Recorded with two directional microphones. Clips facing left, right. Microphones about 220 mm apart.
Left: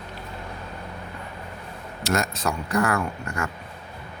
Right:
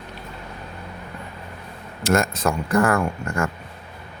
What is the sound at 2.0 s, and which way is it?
Speech, 50° right (ahead or behind).